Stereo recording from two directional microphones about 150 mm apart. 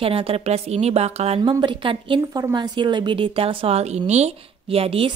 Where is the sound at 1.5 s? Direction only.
35° right (ahead or behind).